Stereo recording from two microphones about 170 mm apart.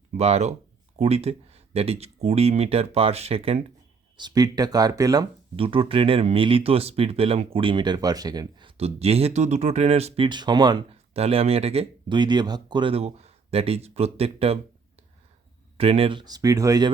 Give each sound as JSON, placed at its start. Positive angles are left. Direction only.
{"t": 0.1, "sound": "speech", "side_deg": -40}
{"t": 4.2, "sound": "speech", "side_deg": -20}
{"t": 5.5, "sound": "speech", "side_deg": -30}
{"t": 11.1, "sound": "speech", "side_deg": -35}